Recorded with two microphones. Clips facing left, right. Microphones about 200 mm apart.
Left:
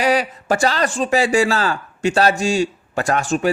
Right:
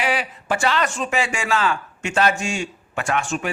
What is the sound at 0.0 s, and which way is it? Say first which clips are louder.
Speech: left 6 dB; 40° left (ahead or behind).